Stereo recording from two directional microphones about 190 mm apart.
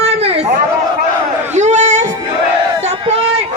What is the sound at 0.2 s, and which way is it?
Chatter, 35° right (ahead or behind).